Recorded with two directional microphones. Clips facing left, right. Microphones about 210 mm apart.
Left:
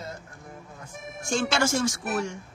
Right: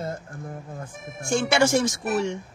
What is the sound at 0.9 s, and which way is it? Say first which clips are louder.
Speech: right 1 dB; centre (ahead or behind).